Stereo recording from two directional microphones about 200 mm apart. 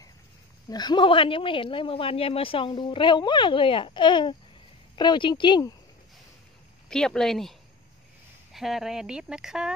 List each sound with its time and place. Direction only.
0.7 s a man's voice: 20° left (ahead or behind)
6.9 s speech: 5° left (ahead or behind)
8.5 s speech: centre (ahead or behind)